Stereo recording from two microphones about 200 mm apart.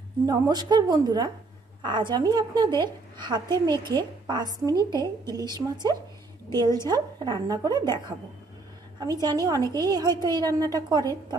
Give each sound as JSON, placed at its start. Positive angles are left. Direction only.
{"t": 0.3, "sound": "a woman's voice", "side_deg": -20}
{"t": 9.0, "sound": "a woman's voice", "side_deg": -20}